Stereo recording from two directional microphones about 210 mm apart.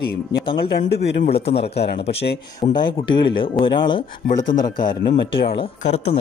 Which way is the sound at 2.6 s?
20° left (ahead or behind).